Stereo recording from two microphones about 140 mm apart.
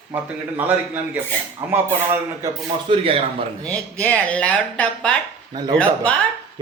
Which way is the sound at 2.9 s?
45° right (ahead or behind).